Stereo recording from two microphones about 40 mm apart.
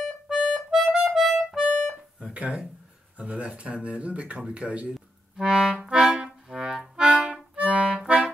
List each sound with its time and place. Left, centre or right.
0.0 s accordion: centre
0.7 s music: centre
2.3 s speech: right
5.4 s music: centre